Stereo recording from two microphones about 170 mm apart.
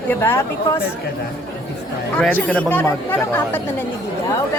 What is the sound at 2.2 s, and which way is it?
Speech, 10° left (ahead or behind).